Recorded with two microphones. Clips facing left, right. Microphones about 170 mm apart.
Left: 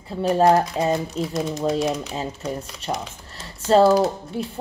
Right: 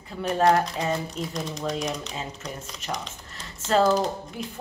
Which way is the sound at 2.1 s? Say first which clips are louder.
Left 7 dB; 30° left (ahead or behind).